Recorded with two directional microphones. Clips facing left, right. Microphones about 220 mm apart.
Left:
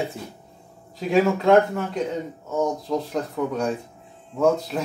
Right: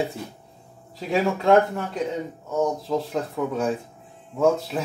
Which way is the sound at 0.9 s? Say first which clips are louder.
Left 4 dB; centre (ahead or behind).